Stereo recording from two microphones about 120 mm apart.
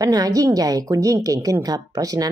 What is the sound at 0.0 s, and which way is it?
Speech, 30° right (ahead or behind).